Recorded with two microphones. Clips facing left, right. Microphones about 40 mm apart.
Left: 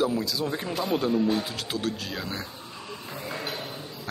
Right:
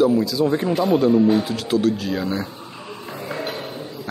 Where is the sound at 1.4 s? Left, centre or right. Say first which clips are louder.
Right 10 dB; centre.